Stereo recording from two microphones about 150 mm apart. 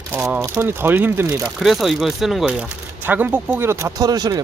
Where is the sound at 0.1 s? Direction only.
10° right (ahead or behind).